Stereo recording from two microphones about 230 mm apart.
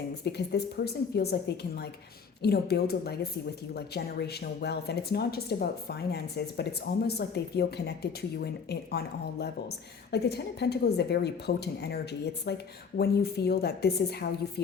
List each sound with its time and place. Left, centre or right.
0.3 s a woman's voice: left